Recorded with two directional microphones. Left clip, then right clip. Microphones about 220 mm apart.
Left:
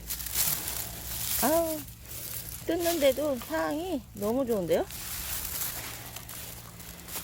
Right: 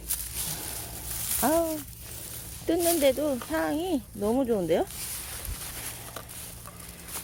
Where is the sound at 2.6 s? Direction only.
15° right (ahead or behind).